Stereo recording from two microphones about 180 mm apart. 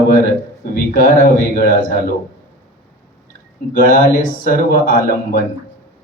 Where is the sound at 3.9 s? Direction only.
50° left (ahead or behind).